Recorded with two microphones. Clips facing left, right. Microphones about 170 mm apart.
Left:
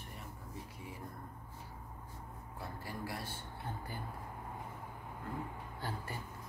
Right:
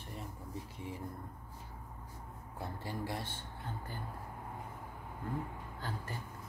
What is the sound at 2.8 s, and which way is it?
Speech, 25° right (ahead or behind).